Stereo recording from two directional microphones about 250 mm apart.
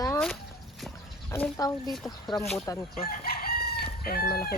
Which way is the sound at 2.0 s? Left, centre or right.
Centre.